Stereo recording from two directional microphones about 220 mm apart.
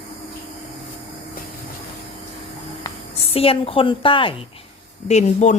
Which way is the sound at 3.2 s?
25° left (ahead or behind).